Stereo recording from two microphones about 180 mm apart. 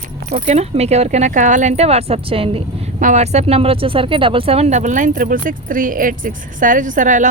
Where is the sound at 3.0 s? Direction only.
40° right (ahead or behind).